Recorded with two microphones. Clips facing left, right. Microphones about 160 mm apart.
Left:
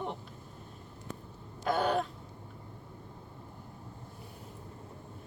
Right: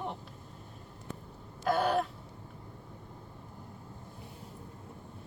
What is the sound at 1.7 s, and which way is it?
Speech, 5° right (ahead or behind).